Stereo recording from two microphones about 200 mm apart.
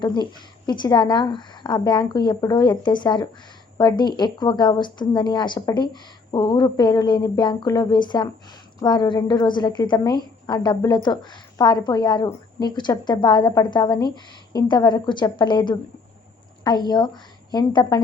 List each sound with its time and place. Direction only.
0.0 s a woman's voice: 20° left (ahead or behind)